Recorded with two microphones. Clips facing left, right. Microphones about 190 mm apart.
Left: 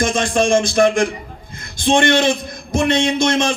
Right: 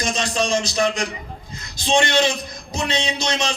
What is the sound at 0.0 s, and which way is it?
A man's voice, 50° left (ahead or behind).